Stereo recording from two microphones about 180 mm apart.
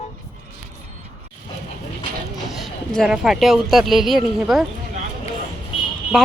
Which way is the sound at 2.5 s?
Centre (ahead or behind).